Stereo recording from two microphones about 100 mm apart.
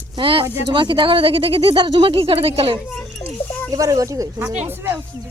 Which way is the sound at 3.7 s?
35° right (ahead or behind).